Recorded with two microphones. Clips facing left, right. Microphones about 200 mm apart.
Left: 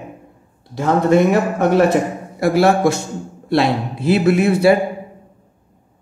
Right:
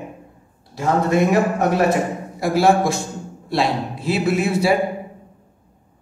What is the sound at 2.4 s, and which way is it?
Speech, 65° left (ahead or behind).